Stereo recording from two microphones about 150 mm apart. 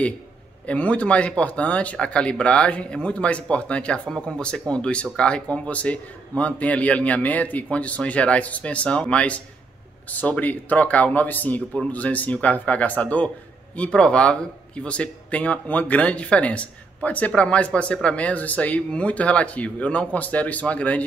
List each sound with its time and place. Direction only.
0.7 s speech: 10° left (ahead or behind)